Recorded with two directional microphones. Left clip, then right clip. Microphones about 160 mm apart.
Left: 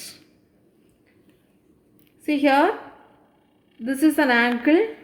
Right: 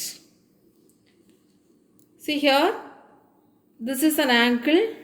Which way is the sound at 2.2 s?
55° left (ahead or behind).